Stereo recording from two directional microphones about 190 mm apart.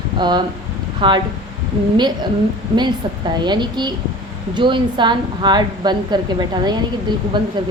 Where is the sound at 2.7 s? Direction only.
25° right (ahead or behind).